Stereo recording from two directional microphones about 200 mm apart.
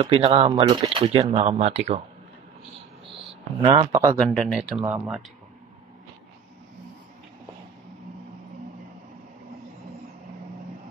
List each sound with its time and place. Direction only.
0.0 s speech: 30° right (ahead or behind)
3.6 s speech: 25° right (ahead or behind)
4.3 s speech: centre (ahead or behind)